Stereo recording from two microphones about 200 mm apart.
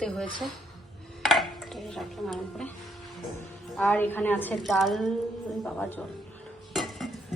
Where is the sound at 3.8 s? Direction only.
10° left (ahead or behind).